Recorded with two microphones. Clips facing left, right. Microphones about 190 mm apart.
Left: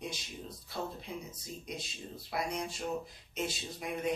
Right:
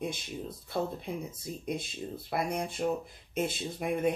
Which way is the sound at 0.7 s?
55° right (ahead or behind).